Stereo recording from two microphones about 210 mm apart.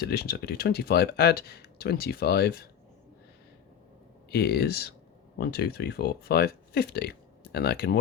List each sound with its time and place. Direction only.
0.0 s speech: 50° left (ahead or behind)
4.3 s speech: 50° left (ahead or behind)